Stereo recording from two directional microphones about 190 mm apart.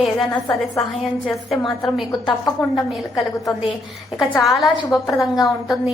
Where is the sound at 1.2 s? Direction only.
Centre (ahead or behind).